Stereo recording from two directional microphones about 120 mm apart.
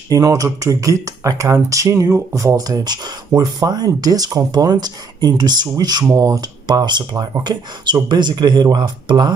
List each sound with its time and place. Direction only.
0.1 s speech: 30° right (ahead or behind)